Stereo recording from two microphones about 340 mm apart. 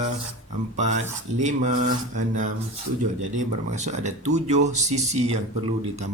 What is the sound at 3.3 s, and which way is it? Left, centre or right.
Speech, centre.